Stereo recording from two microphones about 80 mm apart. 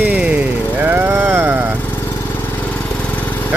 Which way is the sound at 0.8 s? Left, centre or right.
Right.